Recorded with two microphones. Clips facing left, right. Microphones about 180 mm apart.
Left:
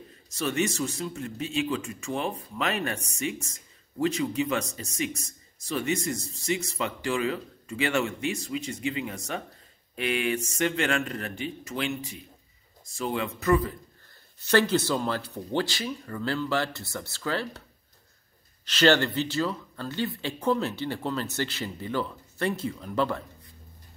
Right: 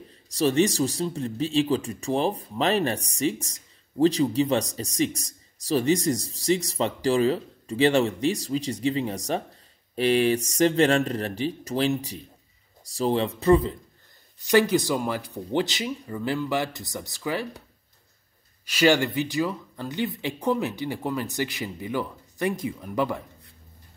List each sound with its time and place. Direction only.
0.3 s speech: 35° right (ahead or behind)
14.4 s speech: 15° right (ahead or behind)
18.7 s speech: 10° right (ahead or behind)